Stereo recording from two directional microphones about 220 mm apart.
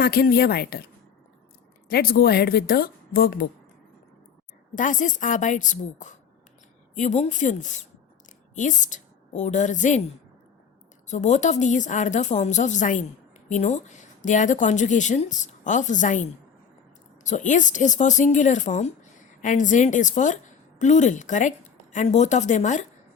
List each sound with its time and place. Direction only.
0.0 s a woman's voice: 45° left (ahead or behind)
1.9 s a woman's voice: 45° left (ahead or behind)
4.7 s a woman's voice: 35° left (ahead or behind)
11.1 s a woman's voice: 30° left (ahead or behind)
17.2 s a woman's voice: 35° left (ahead or behind)